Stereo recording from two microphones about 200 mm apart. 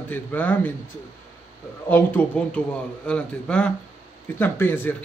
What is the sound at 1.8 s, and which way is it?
A man's voice, 10° left (ahead or behind).